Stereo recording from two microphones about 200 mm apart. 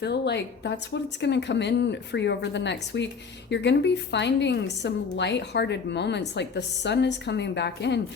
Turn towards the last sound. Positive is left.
turn(degrees=60)  # may be behind; listen again after turning